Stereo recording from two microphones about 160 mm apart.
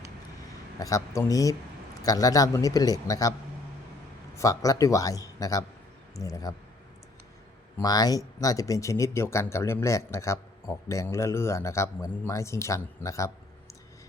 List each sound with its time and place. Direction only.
0.8 s speech: 20° left (ahead or behind)
4.4 s speech: 20° left (ahead or behind)
7.8 s speech: 25° left (ahead or behind)